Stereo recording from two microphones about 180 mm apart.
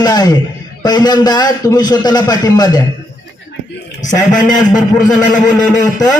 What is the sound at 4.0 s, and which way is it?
A man's voice, 45° left (ahead or behind).